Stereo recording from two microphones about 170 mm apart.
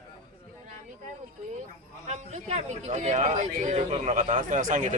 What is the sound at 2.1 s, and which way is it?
Speech, 45° right (ahead or behind).